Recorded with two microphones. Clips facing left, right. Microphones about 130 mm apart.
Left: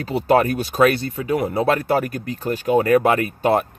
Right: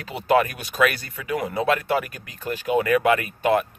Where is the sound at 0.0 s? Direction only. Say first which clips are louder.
Left 3 dB; 35° left (ahead or behind).